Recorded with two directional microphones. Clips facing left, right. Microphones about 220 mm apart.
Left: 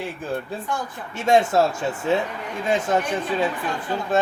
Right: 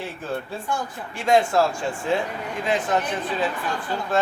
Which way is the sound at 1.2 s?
25° left (ahead or behind).